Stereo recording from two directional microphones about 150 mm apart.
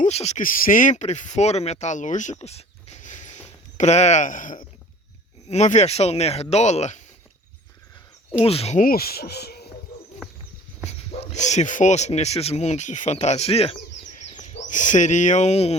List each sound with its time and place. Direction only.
0.0 s speech: 45° left (ahead or behind)
0.4 s speech: 65° left (ahead or behind)
5.5 s speech: 50° left (ahead or behind)
8.4 s speech: 45° left (ahead or behind)
8.8 s speech: 85° left
10.8 s speech: 45° left (ahead or behind)